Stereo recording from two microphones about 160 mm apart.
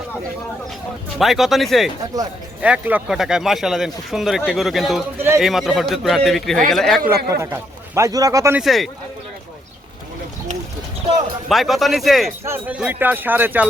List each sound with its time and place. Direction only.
1.2 s speech: centre (ahead or behind)
7.3 s a man's voice: 20° right (ahead or behind)
8.5 s speech: centre (ahead or behind)
11.4 s speech: centre (ahead or behind)
12.5 s speech: 10° right (ahead or behind)